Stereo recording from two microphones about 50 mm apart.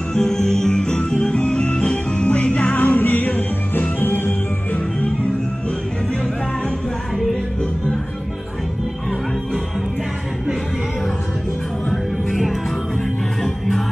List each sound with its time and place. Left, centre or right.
0.1 s music: centre; by 4.4 s left
4.7 s music: left
11.9 s music: centre